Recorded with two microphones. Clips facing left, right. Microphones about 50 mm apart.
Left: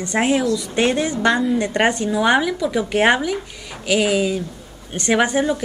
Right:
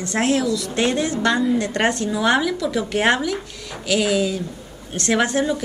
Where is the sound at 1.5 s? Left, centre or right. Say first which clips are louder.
Left 2 dB; centre.